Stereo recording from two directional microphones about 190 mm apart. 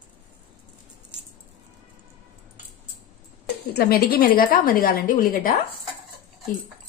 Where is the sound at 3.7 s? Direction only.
55° left (ahead or behind).